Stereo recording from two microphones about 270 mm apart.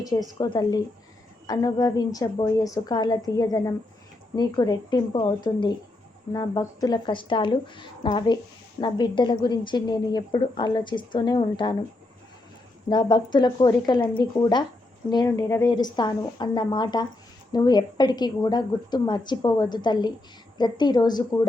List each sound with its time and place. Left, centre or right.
0.0 s a woman's voice: centre
12.9 s a woman's voice: centre